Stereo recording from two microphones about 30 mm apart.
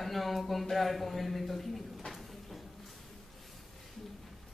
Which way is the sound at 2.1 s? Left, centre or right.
Centre.